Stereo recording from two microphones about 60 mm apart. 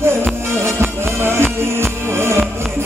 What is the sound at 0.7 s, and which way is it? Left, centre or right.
Music, right.